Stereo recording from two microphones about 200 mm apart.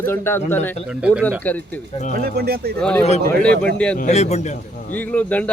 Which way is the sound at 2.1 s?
50° right (ahead or behind).